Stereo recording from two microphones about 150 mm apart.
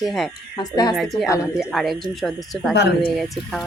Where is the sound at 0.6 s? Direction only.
25° left (ahead or behind).